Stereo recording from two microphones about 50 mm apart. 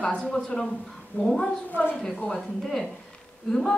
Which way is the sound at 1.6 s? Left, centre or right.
Left.